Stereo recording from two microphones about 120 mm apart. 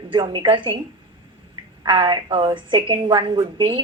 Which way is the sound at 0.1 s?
40° right (ahead or behind).